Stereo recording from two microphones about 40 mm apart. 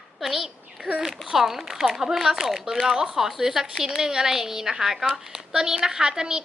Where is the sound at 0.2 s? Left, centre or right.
Centre.